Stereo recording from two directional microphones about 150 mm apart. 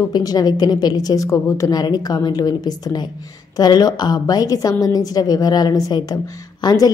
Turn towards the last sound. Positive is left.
turn(degrees=25)  # may be behind; listen again after turning